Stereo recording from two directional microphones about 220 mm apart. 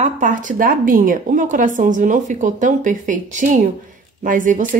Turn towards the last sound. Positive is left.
turn(degrees=-35)  # may be behind; listen again after turning